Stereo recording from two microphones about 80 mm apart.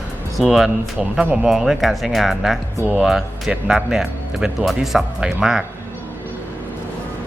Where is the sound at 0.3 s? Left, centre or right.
Centre.